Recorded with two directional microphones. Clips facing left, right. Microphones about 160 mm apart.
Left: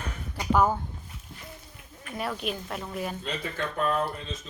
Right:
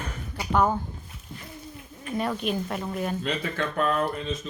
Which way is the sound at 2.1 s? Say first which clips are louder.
Right 4 dB; centre (ahead or behind).